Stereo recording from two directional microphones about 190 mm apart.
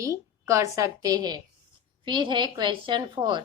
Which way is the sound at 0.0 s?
15° right (ahead or behind).